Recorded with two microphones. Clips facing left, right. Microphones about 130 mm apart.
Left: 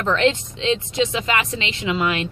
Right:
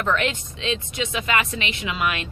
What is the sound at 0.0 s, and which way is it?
Speech, 25° left (ahead or behind).